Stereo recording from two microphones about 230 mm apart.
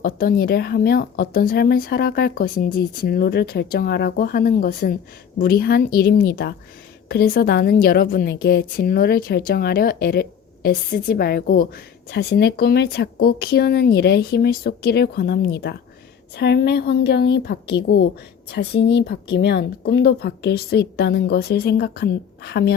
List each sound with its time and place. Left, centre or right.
0.0 s a woman's voice: left